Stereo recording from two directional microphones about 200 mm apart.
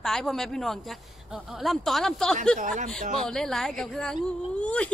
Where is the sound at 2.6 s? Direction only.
40° right (ahead or behind).